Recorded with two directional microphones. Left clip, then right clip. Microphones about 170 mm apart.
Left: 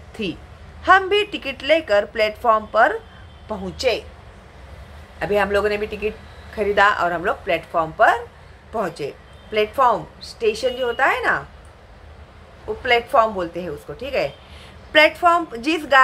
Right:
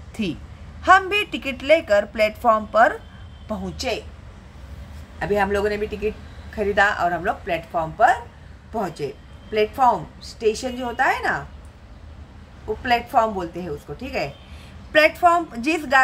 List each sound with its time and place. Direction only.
0.2 s a woman's voice: 25° right (ahead or behind)
5.2 s a woman's voice: 15° right (ahead or behind)
12.8 s a woman's voice: 20° right (ahead or behind)